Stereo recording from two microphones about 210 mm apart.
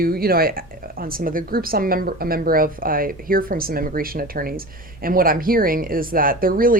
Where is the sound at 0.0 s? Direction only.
45° right (ahead or behind).